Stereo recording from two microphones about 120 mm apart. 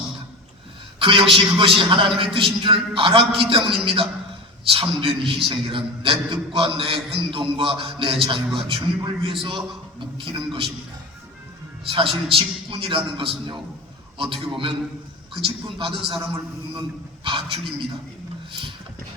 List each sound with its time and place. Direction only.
0.9 s a man's voice: 45° right (ahead or behind)
11.9 s a man's voice: 45° right (ahead or behind)